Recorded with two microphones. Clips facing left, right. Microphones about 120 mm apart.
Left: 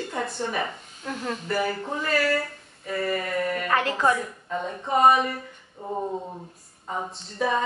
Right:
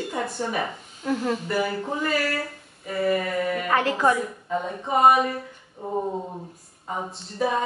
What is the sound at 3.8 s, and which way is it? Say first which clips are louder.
Speech: right 2 dB; 20° right (ahead or behind).